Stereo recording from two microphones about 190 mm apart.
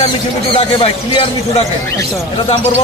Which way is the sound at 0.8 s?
35° left (ahead or behind).